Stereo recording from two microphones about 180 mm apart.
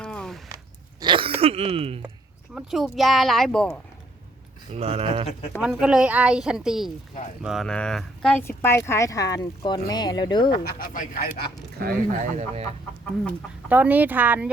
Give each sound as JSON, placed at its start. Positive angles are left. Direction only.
{"t": 0.0, "sound": "a sound", "side_deg": 5}
{"t": 0.4, "sound": "a sound", "side_deg": -20}
{"t": 2.6, "sound": "a woman's voice", "side_deg": 0}
{"t": 4.7, "sound": "speech", "side_deg": -35}
{"t": 5.5, "sound": "a woman's voice", "side_deg": -5}
{"t": 10.5, "sound": "speech", "side_deg": 60}
{"t": 11.8, "sound": "speech", "side_deg": -55}
{"t": 12.4, "sound": "speech", "side_deg": -35}
{"t": 13.7, "sound": "speech", "side_deg": -10}